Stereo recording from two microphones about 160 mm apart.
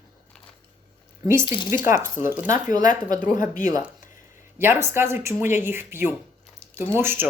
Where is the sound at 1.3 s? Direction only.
15° right (ahead or behind).